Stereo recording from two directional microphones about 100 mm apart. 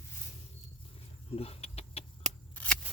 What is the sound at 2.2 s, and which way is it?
Scissors, 10° left (ahead or behind).